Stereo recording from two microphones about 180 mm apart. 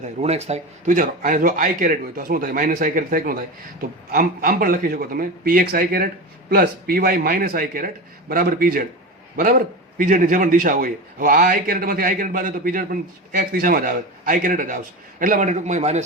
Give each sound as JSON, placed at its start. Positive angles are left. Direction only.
{"t": 0.0, "sound": "a man's voice", "side_deg": -35}